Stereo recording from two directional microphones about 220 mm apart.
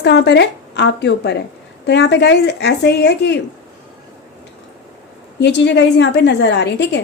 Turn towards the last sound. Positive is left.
turn(degrees=50)  # may be behind; listen again after turning